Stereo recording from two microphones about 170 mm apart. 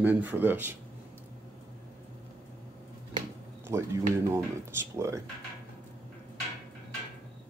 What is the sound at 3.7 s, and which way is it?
Speech, 15° right (ahead or behind).